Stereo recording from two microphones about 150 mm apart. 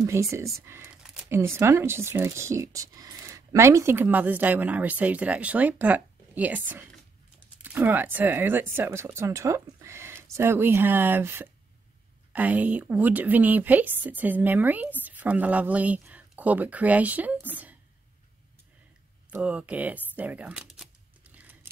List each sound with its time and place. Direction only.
0.0 s speech: 20° right (ahead or behind)
0.8 s a sound: 5° right (ahead or behind)
1.3 s speech: 15° right (ahead or behind)
7.6 s speech: 10° right (ahead or behind)
19.3 s speech: 10° right (ahead or behind)